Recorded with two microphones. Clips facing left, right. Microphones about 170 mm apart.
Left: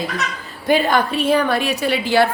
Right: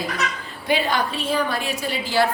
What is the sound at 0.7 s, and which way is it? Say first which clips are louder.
A woman's voice: left 5 dB; 50° left (ahead or behind).